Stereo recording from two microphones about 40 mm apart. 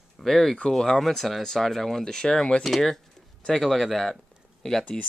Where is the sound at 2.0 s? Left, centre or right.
Centre.